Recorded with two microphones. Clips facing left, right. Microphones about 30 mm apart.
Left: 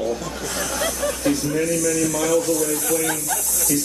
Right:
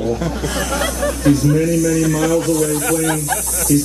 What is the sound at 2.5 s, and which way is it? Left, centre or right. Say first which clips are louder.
Speech: right 6 dB; right.